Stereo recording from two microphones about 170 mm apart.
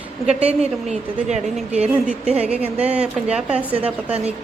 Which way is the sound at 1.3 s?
40° right (ahead or behind).